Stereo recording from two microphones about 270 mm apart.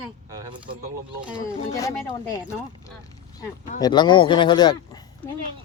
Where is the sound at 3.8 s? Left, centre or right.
Centre.